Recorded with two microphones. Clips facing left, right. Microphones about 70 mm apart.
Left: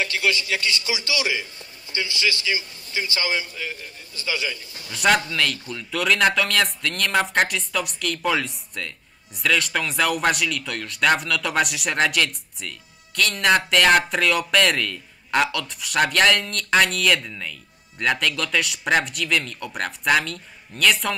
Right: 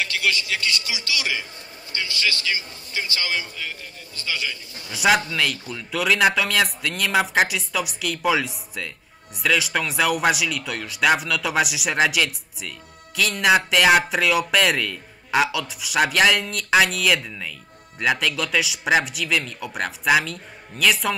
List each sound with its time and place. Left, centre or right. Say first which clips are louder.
0.0 s a man's voice: left 1 dB; left
4.9 s speech: even; centre